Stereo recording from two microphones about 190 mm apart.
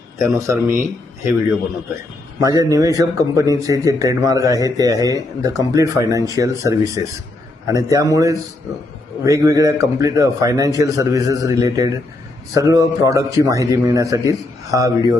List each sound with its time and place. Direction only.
0.2 s a man's voice: 15° right (ahead or behind)